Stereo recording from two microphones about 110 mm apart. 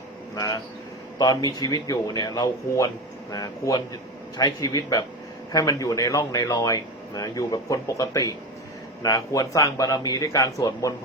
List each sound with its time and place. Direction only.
0.3 s speech: 30° left (ahead or behind)